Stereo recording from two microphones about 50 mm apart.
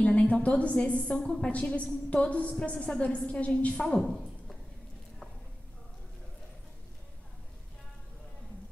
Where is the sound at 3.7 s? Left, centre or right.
Centre.